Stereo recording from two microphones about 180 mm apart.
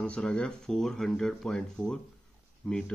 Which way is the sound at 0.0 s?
5° left (ahead or behind).